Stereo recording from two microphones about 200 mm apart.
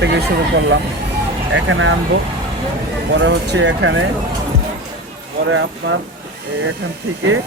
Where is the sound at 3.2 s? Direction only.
65° right (ahead or behind).